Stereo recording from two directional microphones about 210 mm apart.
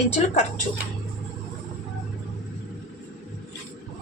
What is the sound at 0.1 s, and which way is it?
Speech, 30° left (ahead or behind).